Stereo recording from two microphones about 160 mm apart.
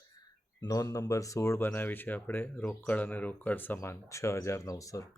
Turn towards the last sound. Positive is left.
turn(degrees=20)  # may be behind; listen again after turning